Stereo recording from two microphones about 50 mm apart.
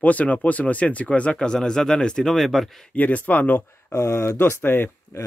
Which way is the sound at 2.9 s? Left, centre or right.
Left.